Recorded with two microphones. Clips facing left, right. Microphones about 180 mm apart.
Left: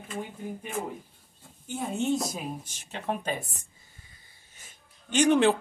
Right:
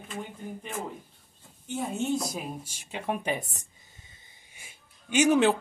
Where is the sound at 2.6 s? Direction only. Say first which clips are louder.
Right 1 dB; 10° right (ahead or behind).